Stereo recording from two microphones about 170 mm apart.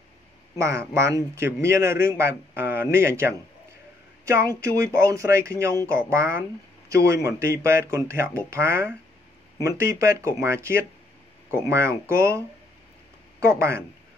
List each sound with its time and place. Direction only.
0.6 s a man's voice: 15° right (ahead or behind)
4.6 s a man's voice: 15° right (ahead or behind)